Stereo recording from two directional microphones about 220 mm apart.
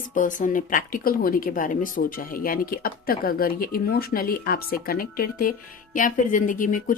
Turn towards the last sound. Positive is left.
turn(degrees=35)  # may be behind; listen again after turning